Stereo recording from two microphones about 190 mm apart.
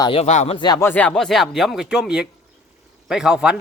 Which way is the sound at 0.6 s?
20° left (ahead or behind).